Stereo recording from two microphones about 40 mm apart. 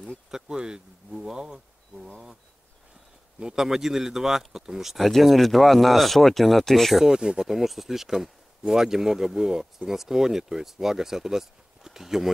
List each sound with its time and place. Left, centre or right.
0.3 s a sound: right
3.3 s speech: centre
7.2 s speech: centre
7.4 s speech: centre